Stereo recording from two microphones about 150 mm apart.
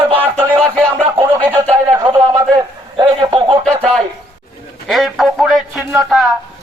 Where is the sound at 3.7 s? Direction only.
5° left (ahead or behind).